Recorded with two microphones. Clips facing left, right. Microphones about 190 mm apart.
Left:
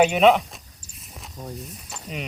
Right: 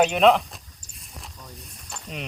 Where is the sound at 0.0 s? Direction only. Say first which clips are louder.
Left 1 dB; 5° left (ahead or behind).